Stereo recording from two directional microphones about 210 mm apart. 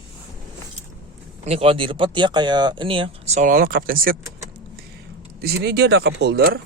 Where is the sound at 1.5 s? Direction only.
30° right (ahead or behind); by 4.1 s 45° right (ahead or behind).